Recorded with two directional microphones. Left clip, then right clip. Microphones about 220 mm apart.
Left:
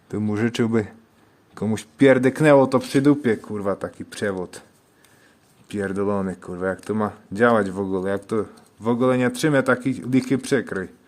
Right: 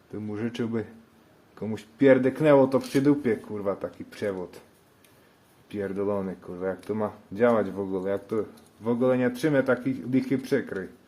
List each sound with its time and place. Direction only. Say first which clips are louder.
0.1 s speech: left 9 dB; 55° left (ahead or behind)
5.6 s speech: left 5 dB; 45° left (ahead or behind)